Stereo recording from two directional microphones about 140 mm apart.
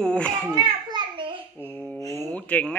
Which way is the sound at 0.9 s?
35° right (ahead or behind).